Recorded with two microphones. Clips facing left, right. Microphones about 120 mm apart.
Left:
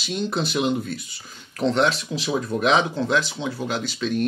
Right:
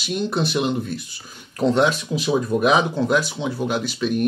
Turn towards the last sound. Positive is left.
turn(degrees=-10)  # may be behind; listen again after turning